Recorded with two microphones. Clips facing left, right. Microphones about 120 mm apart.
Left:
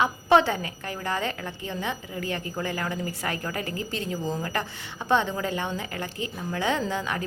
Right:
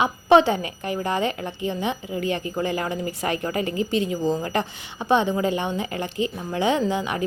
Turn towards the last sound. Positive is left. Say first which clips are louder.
# right 5 dB
turn(degrees=-15)  # may be behind; listen again after turning